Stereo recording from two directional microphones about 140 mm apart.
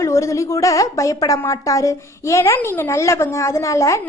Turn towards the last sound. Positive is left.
turn(degrees=20)  # may be behind; listen again after turning